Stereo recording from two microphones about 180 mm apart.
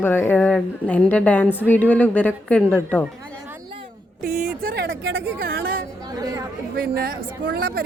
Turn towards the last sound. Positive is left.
turn(degrees=-60)  # may be behind; listen again after turning